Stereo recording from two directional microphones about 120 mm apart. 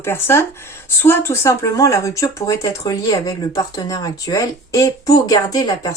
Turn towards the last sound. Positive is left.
turn(degrees=35)  # may be behind; listen again after turning